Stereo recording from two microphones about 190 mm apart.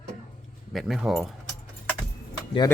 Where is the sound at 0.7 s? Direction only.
Centre (ahead or behind).